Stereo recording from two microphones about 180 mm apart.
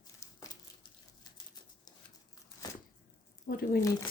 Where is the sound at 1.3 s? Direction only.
20° left (ahead or behind).